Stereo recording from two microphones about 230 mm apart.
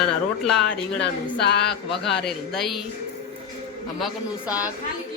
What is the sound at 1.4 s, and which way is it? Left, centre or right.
Music, left.